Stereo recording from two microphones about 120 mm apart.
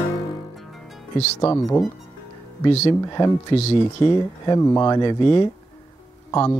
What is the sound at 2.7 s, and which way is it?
Speech, 60° left (ahead or behind).